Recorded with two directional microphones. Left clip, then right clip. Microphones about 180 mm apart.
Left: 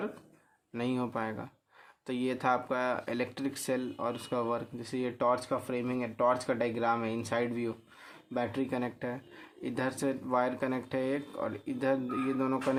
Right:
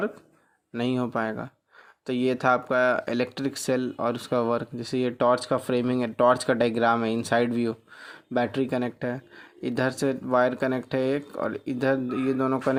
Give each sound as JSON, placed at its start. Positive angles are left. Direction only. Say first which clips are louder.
{"t": 0.7, "sound": "speech", "louder": "right 6 dB", "side_deg": -30}